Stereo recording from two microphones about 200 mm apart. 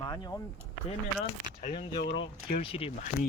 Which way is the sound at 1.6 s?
25° left (ahead or behind).